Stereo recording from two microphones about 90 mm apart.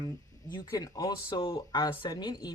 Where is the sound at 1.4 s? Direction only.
70° left (ahead or behind).